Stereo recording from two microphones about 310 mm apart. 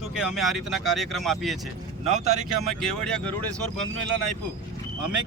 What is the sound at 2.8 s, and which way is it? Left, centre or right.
Speech, centre.